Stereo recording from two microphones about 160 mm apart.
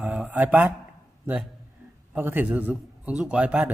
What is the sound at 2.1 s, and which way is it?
Speech, 10° right (ahead or behind).